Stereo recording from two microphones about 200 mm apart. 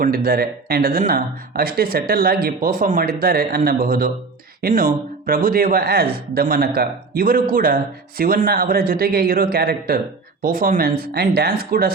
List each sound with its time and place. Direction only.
0.0 s speech: 45° right (ahead or behind)